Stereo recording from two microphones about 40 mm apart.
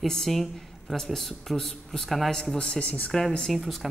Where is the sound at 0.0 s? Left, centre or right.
Centre.